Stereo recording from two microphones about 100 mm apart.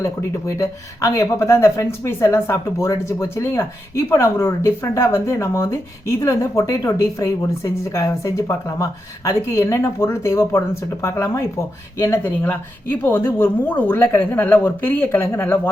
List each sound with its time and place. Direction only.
0.0 s speech: 30° left (ahead or behind)